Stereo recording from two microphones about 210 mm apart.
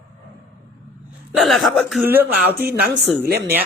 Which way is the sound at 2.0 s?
10° right (ahead or behind).